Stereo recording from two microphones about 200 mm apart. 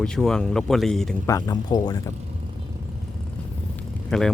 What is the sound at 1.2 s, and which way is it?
Speech, 15° left (ahead or behind).